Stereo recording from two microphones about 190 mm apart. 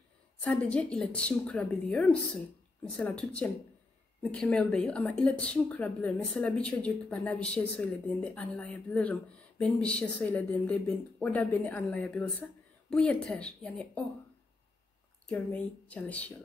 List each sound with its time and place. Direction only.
0.4 s a woman's voice: 5° left (ahead or behind)
15.2 s speech: 5° left (ahead or behind)